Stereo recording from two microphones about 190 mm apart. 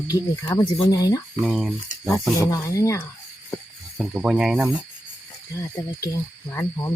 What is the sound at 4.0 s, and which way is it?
Speech, 5° right (ahead or behind).